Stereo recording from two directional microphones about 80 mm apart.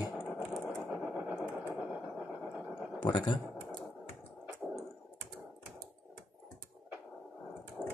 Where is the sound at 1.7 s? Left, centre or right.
Centre.